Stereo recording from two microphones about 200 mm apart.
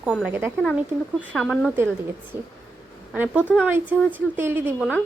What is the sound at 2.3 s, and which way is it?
A woman's voice, 10° right (ahead or behind).